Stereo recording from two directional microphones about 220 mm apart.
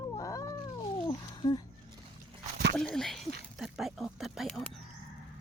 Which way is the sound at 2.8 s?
Centre (ahead or behind).